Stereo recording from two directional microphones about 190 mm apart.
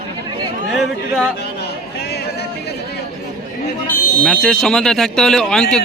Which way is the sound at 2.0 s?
60° left (ahead or behind).